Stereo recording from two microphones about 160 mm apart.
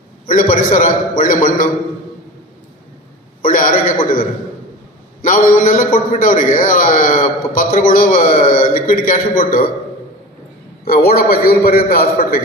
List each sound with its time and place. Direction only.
0.3 s a man's voice: 60° left (ahead or behind)
3.4 s a sound: 60° left (ahead or behind)
5.2 s a man's voice: 60° left (ahead or behind)
10.8 s a man's voice: 70° left (ahead or behind)